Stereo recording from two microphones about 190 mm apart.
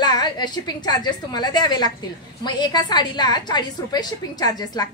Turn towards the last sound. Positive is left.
turn(degrees=20)  # may be behind; listen again after turning